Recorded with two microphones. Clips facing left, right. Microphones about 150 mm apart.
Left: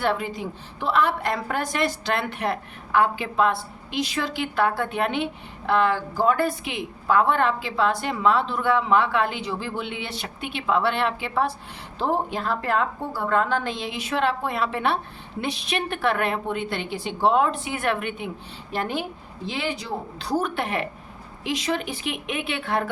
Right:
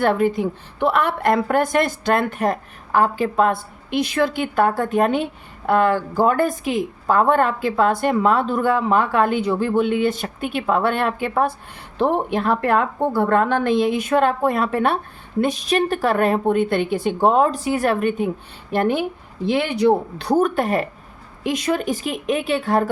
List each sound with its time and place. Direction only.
0.0 s a woman's voice: 55° right (ahead or behind)
11.9 s a woman's voice: 60° right (ahead or behind); by 18.3 s 40° right (ahead or behind)
18.7 s a woman's voice: 55° right (ahead or behind)